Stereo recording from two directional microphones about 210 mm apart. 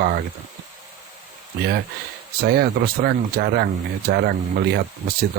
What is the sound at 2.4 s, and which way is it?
Speech, 50° right (ahead or behind).